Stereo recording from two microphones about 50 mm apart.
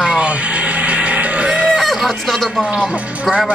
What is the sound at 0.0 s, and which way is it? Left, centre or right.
Music, right.